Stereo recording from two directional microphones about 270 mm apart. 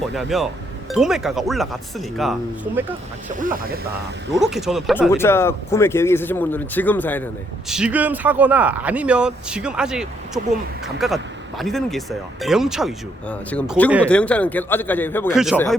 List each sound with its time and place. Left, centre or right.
0.1 s speech: centre
3.4 s speech: right
4.4 s speech: centre
7.7 s speech: centre